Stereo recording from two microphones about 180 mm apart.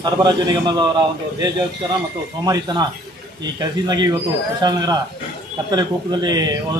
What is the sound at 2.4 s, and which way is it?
Speech, 20° right (ahead or behind).